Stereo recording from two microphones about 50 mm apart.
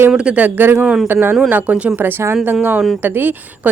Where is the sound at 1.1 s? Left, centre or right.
Right.